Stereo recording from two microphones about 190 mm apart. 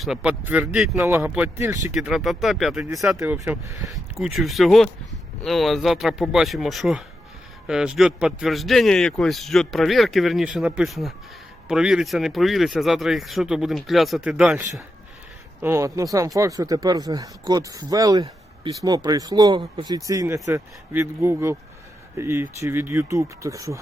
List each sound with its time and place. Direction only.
0.0 s a man's voice: 5° right (ahead or behind)
1.9 s a man's voice: centre (ahead or behind)
3.2 s speech: 15° right (ahead or behind)
3.9 s a man's voice: centre (ahead or behind)
15.6 s speech: 15° right (ahead or behind)